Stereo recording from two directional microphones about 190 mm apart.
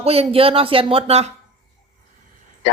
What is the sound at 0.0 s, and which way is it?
Speech, 30° right (ahead or behind).